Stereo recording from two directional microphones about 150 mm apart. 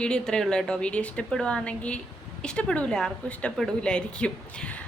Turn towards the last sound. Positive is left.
turn(degrees=10)  # may be behind; listen again after turning